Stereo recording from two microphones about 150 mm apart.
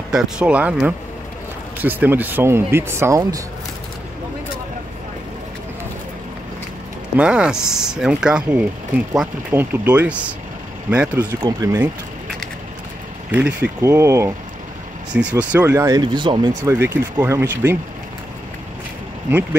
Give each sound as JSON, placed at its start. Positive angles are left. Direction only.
{"t": 0.1, "sound": "speech", "side_deg": -5}
{"t": 1.8, "sound": "speech", "side_deg": -10}
{"t": 7.2, "sound": "speech", "side_deg": -5}
{"t": 11.6, "sound": "speech", "side_deg": -20}
{"t": 13.3, "sound": "speech", "side_deg": -10}
{"t": 16.0, "sound": "speech", "side_deg": -30}
{"t": 16.6, "sound": "speech", "side_deg": -15}